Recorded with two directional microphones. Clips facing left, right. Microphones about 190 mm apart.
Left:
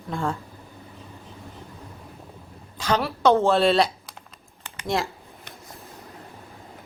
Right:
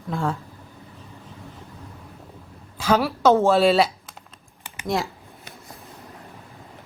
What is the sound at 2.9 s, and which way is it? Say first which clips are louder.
A woman's voice: right 2 dB; 5° right (ahead or behind).